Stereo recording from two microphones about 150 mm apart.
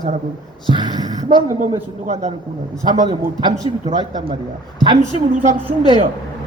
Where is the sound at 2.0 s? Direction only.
50° right (ahead or behind).